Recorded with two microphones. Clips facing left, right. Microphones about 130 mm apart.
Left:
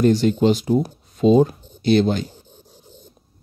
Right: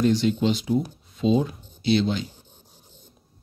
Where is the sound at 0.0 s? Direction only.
45° left (ahead or behind).